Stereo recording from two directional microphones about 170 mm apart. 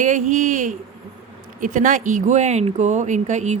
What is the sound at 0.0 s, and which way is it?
Speech, 50° right (ahead or behind).